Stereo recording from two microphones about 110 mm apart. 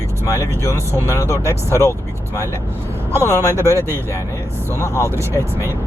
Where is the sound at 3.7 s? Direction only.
25° right (ahead or behind).